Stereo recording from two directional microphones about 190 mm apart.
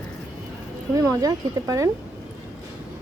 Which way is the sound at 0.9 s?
20° right (ahead or behind).